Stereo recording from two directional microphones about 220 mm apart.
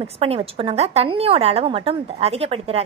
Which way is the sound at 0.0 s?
25° right (ahead or behind).